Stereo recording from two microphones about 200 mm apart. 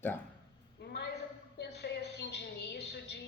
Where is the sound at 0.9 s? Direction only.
60° left (ahead or behind).